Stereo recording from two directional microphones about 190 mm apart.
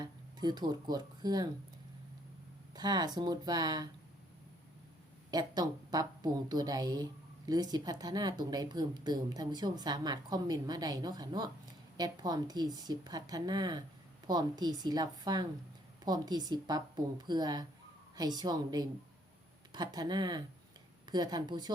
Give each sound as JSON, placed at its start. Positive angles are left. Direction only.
{"t": 0.0, "sound": "speech", "side_deg": -20}
{"t": 2.7, "sound": "a woman's voice", "side_deg": -20}
{"t": 5.3, "sound": "a woman's voice", "side_deg": -20}